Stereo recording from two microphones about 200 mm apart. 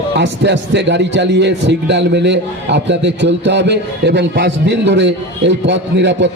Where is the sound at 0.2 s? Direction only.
60° right (ahead or behind).